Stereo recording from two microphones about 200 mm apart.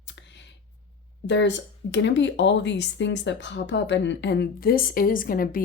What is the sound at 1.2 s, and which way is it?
Speech, 60° left (ahead or behind).